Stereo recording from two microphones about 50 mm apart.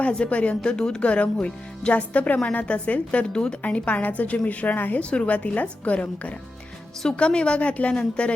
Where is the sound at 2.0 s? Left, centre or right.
Left.